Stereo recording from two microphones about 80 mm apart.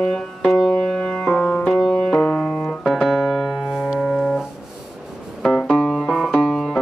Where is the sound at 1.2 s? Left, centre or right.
Centre.